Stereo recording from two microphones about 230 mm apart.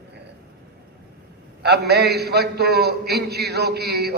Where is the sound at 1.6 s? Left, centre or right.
Right.